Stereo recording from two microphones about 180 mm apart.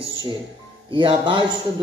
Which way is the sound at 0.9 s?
25° right (ahead or behind).